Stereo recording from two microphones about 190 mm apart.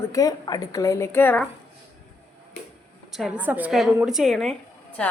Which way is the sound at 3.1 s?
5° right (ahead or behind).